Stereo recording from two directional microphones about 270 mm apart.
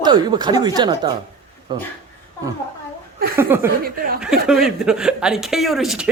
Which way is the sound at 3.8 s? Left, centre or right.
Right.